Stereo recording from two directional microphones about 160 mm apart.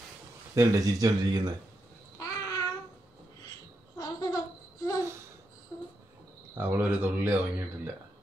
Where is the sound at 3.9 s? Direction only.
25° left (ahead or behind).